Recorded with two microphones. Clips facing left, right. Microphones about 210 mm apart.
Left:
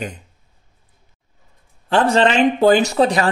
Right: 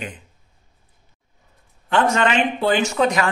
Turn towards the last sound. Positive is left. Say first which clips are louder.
# left 3 dB
turn(degrees=35)  # may be behind; listen again after turning